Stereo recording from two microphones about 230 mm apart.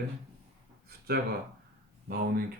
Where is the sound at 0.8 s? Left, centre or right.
Right.